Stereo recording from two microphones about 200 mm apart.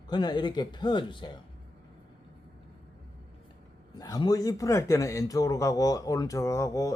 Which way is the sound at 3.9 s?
20° left (ahead or behind).